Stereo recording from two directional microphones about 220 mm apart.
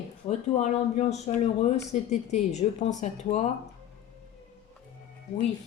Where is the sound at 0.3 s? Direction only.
30° left (ahead or behind).